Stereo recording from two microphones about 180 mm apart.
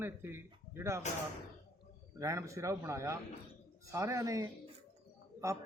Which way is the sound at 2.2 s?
15° right (ahead or behind).